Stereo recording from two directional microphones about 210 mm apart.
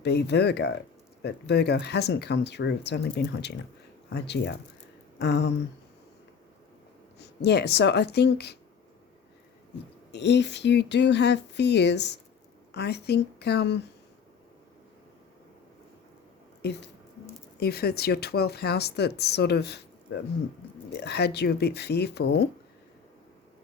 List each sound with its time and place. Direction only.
0.0 s speech: 55° left (ahead or behind)
7.2 s speech: 50° left (ahead or behind)
10.1 s speech: 55° left (ahead or behind)
16.6 s speech: 50° left (ahead or behind)